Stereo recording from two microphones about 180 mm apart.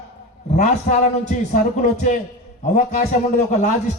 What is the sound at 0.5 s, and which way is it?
A man's voice, 40° left (ahead or behind).